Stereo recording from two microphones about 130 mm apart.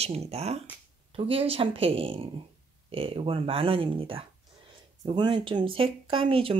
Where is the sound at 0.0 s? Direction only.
55° right (ahead or behind).